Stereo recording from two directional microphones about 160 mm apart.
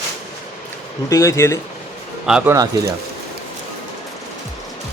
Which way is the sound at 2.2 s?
5° right (ahead or behind).